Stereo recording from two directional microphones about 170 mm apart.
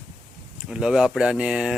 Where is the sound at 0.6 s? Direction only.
5° right (ahead or behind).